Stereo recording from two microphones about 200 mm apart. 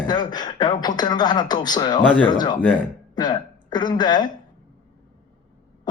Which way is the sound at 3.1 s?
20° left (ahead or behind).